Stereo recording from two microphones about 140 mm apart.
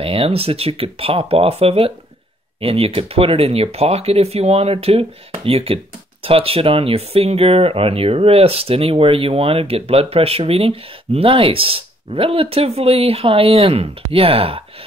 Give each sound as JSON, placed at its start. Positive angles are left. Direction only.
{"t": 0.0, "sound": "speech", "side_deg": -40}